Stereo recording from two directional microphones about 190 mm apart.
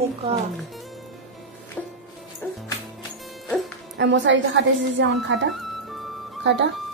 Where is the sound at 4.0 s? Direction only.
70° right (ahead or behind).